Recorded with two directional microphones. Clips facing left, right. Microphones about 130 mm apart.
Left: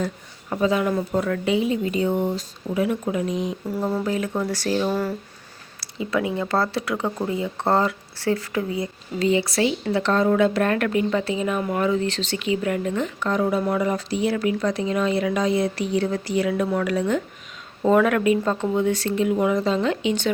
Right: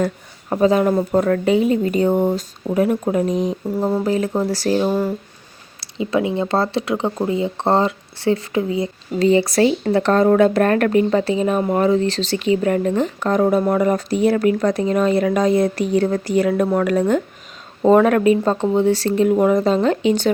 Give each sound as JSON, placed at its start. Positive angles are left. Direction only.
{"t": 0.5, "sound": "speech", "side_deg": -40}
{"t": 3.8, "sound": "speech", "side_deg": -25}
{"t": 9.1, "sound": "speech", "side_deg": -35}